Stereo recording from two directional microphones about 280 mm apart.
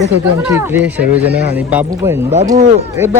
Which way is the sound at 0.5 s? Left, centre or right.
Centre.